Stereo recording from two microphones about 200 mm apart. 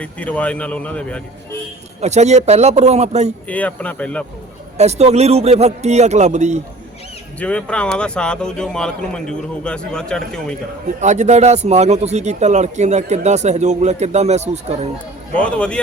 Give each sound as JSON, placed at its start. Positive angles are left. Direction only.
{"t": 0.0, "sound": "speech", "side_deg": 5}
{"t": 2.0, "sound": "a man's voice", "side_deg": -35}
{"t": 3.4, "sound": "speech", "side_deg": 5}
{"t": 4.8, "sound": "a man's voice", "side_deg": -35}
{"t": 7.3, "sound": "speech", "side_deg": 5}
{"t": 11.0, "sound": "a man's voice", "side_deg": -35}
{"t": 15.4, "sound": "speech", "side_deg": 5}